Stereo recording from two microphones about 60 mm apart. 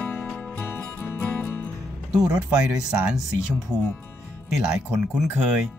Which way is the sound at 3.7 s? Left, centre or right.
Right.